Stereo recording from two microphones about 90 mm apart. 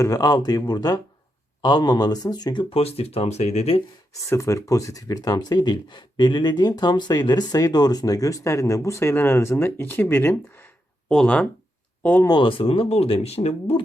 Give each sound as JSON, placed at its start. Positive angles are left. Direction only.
{"t": 0.0, "sound": "speech", "side_deg": 45}
{"t": 2.6, "sound": "speech", "side_deg": 90}
{"t": 4.3, "sound": "speech", "side_deg": 35}
{"t": 11.1, "sound": "speech", "side_deg": 10}
{"t": 12.3, "sound": "speech", "side_deg": 70}